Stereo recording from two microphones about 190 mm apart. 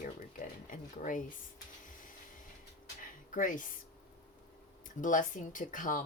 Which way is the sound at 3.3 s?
45° left (ahead or behind).